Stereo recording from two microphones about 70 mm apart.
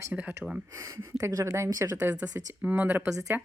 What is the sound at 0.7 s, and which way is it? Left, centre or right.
Speech, right.